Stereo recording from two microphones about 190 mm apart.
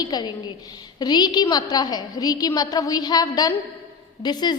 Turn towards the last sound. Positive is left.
turn(degrees=20)  # may be behind; listen again after turning